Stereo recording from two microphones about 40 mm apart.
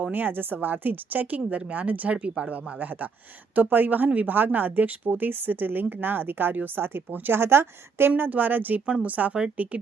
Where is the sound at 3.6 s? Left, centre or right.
Right.